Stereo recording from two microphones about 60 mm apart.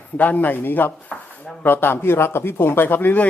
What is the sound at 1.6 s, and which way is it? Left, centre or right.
Speech, left.